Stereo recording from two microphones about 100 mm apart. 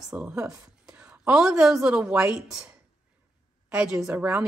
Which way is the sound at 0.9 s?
10° right (ahead or behind).